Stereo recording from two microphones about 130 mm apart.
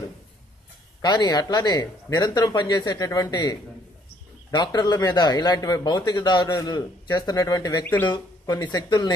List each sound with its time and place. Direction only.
1.0 s speech: 35° left (ahead or behind)
7.8 s speech: 15° left (ahead or behind)
8.1 s speech: 35° left (ahead or behind)